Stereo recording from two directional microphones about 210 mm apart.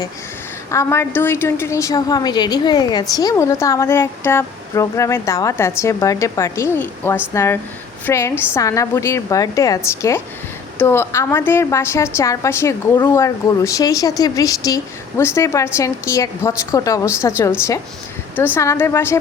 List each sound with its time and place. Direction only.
0.7 s a woman's voice: 10° left (ahead or behind)